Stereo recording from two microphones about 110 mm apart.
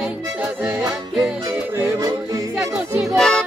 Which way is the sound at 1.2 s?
30° right (ahead or behind).